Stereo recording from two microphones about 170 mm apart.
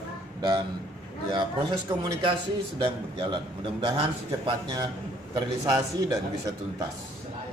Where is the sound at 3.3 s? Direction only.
25° right (ahead or behind).